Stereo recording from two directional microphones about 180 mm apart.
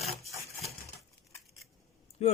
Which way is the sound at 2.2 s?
35° left (ahead or behind).